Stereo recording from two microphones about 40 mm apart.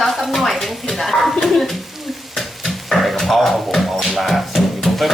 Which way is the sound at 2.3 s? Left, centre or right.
Centre.